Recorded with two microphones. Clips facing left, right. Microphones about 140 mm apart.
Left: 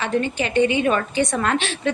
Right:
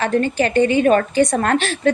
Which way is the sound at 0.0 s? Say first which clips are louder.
Right 5 dB; 45° right (ahead or behind).